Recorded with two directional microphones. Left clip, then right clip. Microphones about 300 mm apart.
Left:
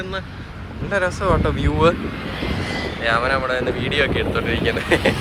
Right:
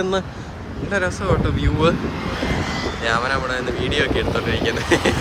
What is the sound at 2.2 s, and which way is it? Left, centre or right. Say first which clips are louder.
Vehicle: right 2 dB; right.